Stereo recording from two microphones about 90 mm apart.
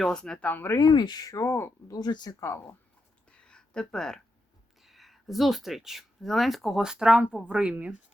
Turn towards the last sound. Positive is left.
turn(degrees=-10)  # may be behind; listen again after turning